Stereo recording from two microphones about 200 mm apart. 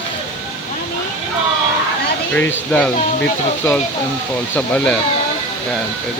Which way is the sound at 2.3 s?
10° left (ahead or behind).